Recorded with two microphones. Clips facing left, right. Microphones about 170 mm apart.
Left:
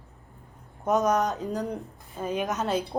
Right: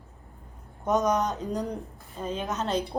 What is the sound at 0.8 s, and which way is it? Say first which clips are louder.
Speech: left 1 dB; 5° left (ahead or behind).